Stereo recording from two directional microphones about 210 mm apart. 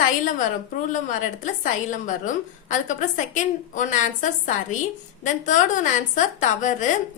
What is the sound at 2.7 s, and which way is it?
A woman's voice, 35° left (ahead or behind).